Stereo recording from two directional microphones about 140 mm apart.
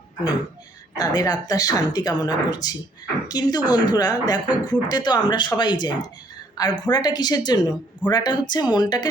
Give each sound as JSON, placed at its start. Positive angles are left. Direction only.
{"t": 0.9, "sound": "speech", "side_deg": 30}
{"t": 6.3, "sound": "a sound", "side_deg": 30}
{"t": 6.8, "sound": "speech", "side_deg": 30}